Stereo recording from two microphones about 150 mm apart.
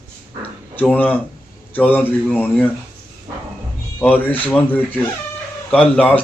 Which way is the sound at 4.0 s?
10° left (ahead or behind).